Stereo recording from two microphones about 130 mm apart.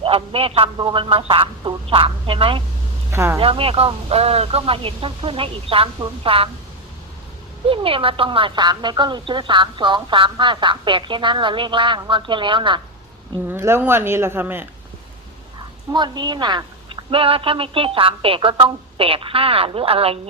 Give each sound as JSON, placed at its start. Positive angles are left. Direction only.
{"t": 0.0, "sound": "speech", "side_deg": -45}
{"t": 3.1, "sound": "speech", "side_deg": -20}
{"t": 3.3, "sound": "speech", "side_deg": -45}
{"t": 7.7, "sound": "speech", "side_deg": -45}
{"t": 13.5, "sound": "speech", "side_deg": -20}
{"t": 15.9, "sound": "speech", "side_deg": -35}